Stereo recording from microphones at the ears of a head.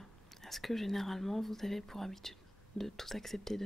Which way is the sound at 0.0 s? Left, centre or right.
Centre.